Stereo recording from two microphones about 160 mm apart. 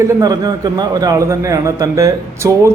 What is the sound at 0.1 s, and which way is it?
A man's voice, 25° right (ahead or behind).